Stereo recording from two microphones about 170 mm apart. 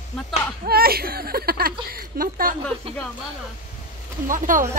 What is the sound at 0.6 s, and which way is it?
Speech, 65° right (ahead or behind).